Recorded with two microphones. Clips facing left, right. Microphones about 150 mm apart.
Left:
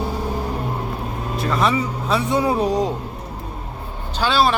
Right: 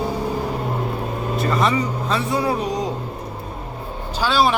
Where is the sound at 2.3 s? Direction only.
20° left (ahead or behind).